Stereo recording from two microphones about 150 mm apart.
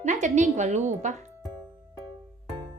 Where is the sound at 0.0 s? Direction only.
55° right (ahead or behind).